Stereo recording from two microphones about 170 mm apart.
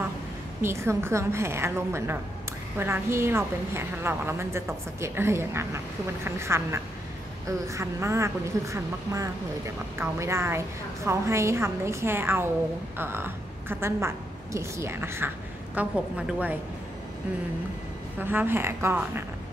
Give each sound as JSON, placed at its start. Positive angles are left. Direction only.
{"t": 0.6, "sound": "a woman's voice", "side_deg": -15}
{"t": 18.2, "sound": "a woman's voice", "side_deg": -10}